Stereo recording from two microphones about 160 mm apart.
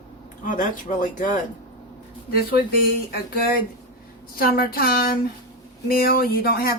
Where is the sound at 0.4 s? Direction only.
55° left (ahead or behind).